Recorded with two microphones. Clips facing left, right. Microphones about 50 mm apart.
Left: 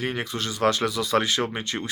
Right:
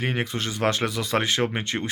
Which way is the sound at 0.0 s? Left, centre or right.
Right.